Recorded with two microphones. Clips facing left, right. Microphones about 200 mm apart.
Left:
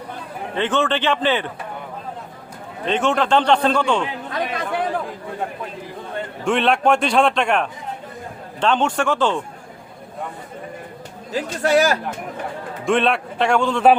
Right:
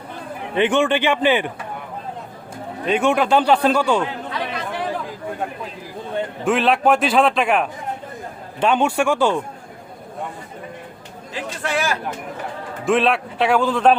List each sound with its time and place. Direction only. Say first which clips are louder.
0.5 s a man's voice: right 3 dB; 15° right (ahead or behind)
2.8 s a man's voice: right 2 dB; 10° right (ahead or behind)
4.3 s chatter: left 2 dB; 50° left (ahead or behind)
6.4 s a man's voice: even; 5° right (ahead or behind)
11.3 s speech: left 7 dB; 40° left (ahead or behind)
12.8 s a man's voice: right 1 dB; centre (ahead or behind)